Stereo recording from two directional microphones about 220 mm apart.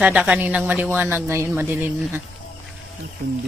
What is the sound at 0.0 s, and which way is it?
A woman's voice, 5° right (ahead or behind).